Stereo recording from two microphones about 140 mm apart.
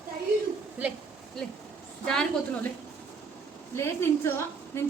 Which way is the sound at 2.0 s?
5° left (ahead or behind).